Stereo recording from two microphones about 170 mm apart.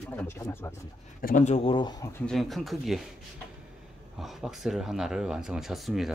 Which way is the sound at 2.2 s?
Centre (ahead or behind).